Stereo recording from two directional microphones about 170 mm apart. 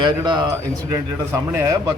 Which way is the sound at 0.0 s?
25° right (ahead or behind).